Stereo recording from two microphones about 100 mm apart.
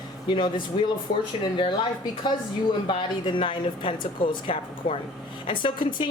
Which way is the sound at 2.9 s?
55° left (ahead or behind).